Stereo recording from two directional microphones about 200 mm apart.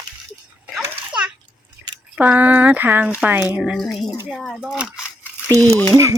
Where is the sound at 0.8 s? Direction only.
5° right (ahead or behind).